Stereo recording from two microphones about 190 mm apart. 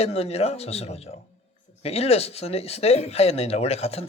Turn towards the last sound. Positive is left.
turn(degrees=35)  # may be behind; listen again after turning